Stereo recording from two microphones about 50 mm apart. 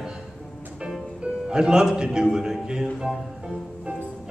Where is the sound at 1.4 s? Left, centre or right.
Centre.